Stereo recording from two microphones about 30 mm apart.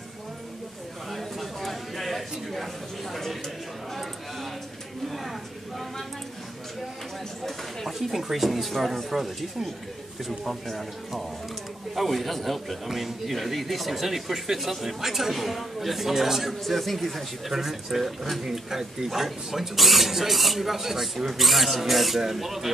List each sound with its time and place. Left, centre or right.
1.1 s a sound: centre
7.4 s a sound: centre
8.2 s a man's voice: centre
11.9 s a man's voice: centre
16.6 s a man's voice: centre
17.5 s a man's voice: centre